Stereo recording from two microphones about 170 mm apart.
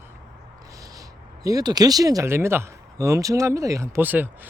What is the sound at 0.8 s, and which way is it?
Speech, 20° right (ahead or behind).